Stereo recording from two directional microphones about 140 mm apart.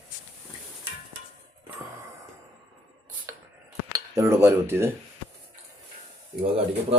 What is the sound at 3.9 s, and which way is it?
Speech, 20° right (ahead or behind).